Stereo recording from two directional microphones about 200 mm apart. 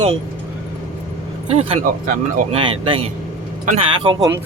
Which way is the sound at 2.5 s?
30° right (ahead or behind).